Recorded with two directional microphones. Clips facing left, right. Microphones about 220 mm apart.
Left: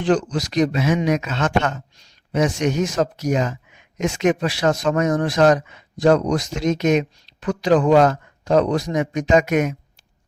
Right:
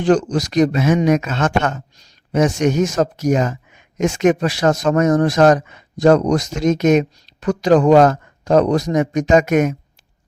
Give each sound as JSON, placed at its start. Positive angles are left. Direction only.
{"t": 0.0, "sound": "speech", "side_deg": -45}